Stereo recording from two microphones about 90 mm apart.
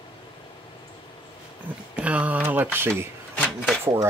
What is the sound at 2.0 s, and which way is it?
Speech, 15° right (ahead or behind).